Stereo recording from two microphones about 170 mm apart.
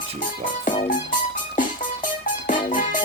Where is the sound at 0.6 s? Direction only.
50° left (ahead or behind).